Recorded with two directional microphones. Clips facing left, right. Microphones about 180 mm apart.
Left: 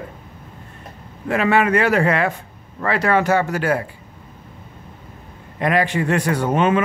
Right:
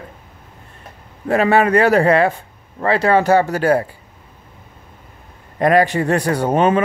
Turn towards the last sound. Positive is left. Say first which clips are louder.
# right 2 dB
turn(degrees=-35)  # may be behind; listen again after turning